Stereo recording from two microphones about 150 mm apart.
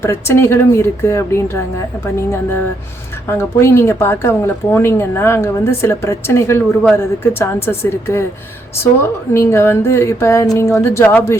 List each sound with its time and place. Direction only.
0.0 s speech: 15° left (ahead or behind)
3.2 s speech: 15° left (ahead or behind)
9.3 s speech: 20° left (ahead or behind)